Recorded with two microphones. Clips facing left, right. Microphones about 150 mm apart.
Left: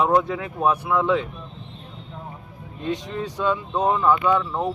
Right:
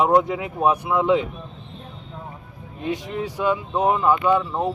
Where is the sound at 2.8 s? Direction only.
10° right (ahead or behind).